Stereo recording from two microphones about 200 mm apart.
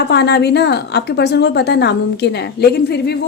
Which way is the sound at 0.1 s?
55° left (ahead or behind).